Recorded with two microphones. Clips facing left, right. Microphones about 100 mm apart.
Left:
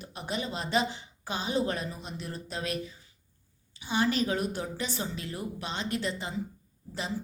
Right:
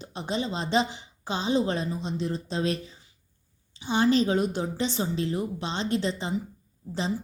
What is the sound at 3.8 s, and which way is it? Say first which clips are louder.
A woman's voice: right 5 dB; 25° right (ahead or behind).